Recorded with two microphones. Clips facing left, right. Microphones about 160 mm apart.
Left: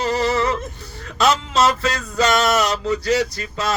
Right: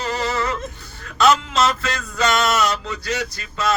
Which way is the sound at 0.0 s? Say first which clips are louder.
Left 4 dB; 35° left (ahead or behind).